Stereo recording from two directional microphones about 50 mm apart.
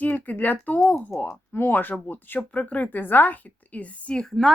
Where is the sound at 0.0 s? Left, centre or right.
Left.